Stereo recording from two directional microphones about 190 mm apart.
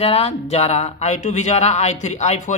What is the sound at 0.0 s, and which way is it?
A man's voice, 30° left (ahead or behind).